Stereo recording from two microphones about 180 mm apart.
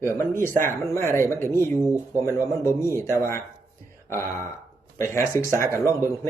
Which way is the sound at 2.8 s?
15° left (ahead or behind).